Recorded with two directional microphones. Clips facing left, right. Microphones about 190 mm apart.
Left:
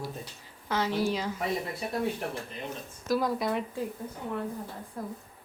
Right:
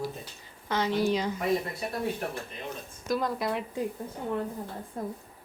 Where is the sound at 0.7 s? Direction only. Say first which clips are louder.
Right 2 dB; 5° left (ahead or behind).